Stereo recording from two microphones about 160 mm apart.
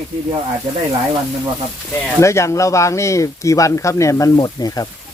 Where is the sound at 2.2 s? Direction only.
20° left (ahead or behind).